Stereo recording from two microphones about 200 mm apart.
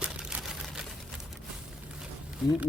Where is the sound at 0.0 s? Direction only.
5° right (ahead or behind).